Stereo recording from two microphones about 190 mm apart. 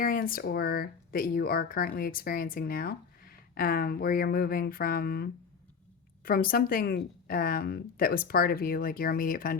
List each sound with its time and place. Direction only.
0.0 s speech: 50° left (ahead or behind)